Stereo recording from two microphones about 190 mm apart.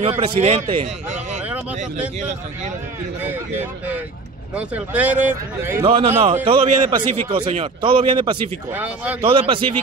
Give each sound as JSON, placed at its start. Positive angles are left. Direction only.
{"t": 0.0, "sound": "speech", "side_deg": -30}
{"t": 1.4, "sound": "vehicle", "side_deg": -10}
{"t": 2.1, "sound": "speech", "side_deg": -35}
{"t": 3.2, "sound": "speech", "side_deg": -10}
{"t": 5.9, "sound": "speech", "side_deg": -30}
{"t": 8.7, "sound": "speech", "side_deg": -10}
{"t": 9.2, "sound": "speech", "side_deg": -25}